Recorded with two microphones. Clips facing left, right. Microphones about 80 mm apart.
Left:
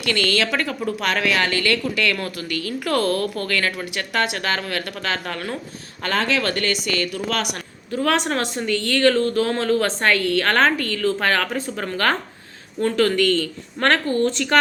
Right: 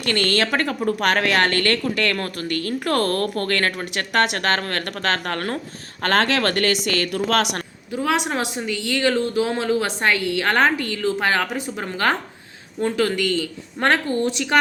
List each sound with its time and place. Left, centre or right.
0.0 s a woman's voice: right
6.0 s a woman's voice: right
7.9 s speech: centre